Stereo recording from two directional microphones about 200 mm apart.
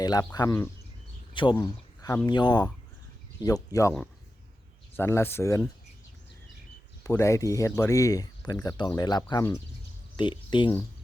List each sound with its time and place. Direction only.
0.0 s speech: 20° left (ahead or behind)
4.9 s speech: 10° left (ahead or behind)
7.0 s speech: 15° left (ahead or behind)